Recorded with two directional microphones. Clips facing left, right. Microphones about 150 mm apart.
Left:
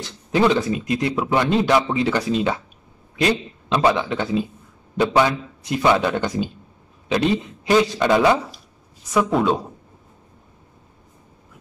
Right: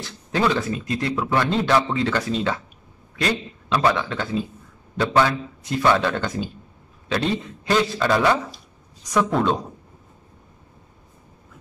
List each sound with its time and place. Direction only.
0.3 s a man's voice: 20° left (ahead or behind)